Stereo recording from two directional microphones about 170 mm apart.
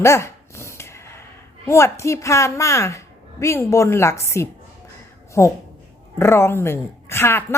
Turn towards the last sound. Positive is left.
turn(degrees=15)  # may be behind; listen again after turning